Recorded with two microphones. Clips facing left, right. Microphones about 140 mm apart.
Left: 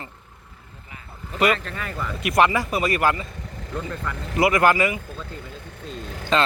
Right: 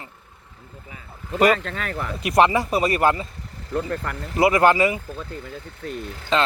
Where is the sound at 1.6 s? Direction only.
80° right.